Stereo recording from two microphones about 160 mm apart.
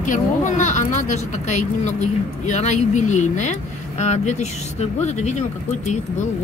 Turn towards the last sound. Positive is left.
turn(degrees=45)  # may be behind; listen again after turning